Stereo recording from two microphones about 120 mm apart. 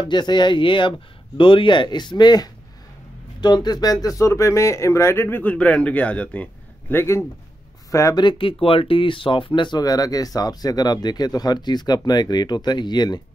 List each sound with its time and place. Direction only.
0.0 s speech: 40° left (ahead or behind)
8.2 s speech: 45° left (ahead or behind)